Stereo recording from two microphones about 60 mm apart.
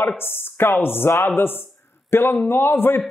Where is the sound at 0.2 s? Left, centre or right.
Left.